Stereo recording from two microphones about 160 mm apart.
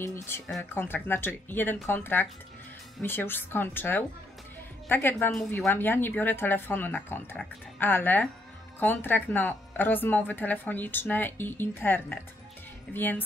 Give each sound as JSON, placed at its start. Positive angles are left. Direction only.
{"t": 0.0, "sound": "a woman's voice", "side_deg": 15}